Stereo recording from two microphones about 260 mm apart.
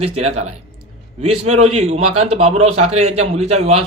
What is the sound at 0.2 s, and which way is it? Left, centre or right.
Speech, right.